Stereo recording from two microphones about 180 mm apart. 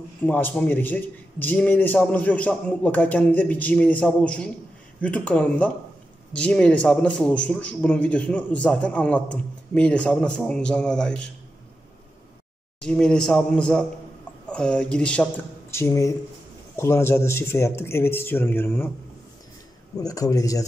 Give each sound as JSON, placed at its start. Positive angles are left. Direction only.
{"t": 0.2, "sound": "a man's voice", "side_deg": 10}
{"t": 12.8, "sound": "a man's voice", "side_deg": 5}
{"t": 20.0, "sound": "a man's voice", "side_deg": 20}